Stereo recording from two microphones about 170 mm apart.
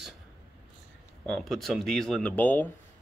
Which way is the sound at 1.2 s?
5° left (ahead or behind).